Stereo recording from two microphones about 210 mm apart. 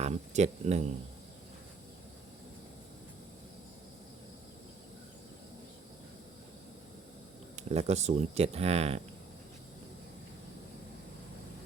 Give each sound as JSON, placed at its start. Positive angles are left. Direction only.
{"t": 0.0, "sound": "speech", "side_deg": -30}
{"t": 7.5, "sound": "speech", "side_deg": -30}